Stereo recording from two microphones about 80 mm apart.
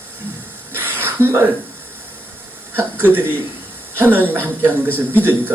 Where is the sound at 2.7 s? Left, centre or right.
Right.